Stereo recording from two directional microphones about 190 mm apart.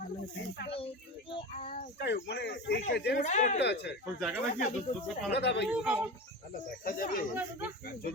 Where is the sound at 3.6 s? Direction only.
65° left (ahead or behind).